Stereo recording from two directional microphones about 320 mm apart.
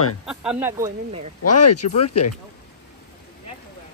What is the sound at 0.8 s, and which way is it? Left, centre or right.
Speech, centre.